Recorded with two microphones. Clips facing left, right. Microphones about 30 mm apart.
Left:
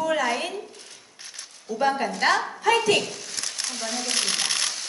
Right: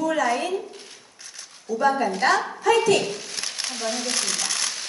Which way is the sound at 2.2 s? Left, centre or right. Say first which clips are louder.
Right 1 dB; left.